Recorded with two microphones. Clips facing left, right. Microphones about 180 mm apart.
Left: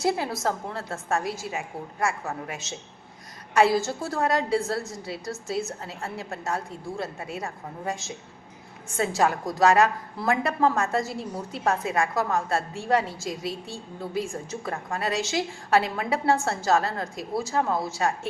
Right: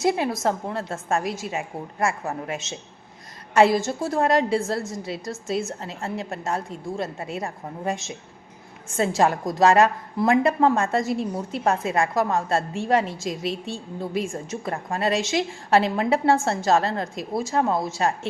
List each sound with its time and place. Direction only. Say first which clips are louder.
0.0 s a woman's voice: right 3 dB; 20° right (ahead or behind)
9.0 s a woman's voice: right 3 dB; 25° right (ahead or behind)